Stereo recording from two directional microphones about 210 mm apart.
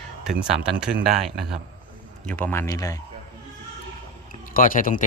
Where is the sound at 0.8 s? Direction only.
5° right (ahead or behind).